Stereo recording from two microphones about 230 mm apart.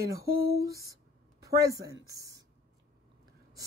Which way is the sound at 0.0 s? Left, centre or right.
Centre.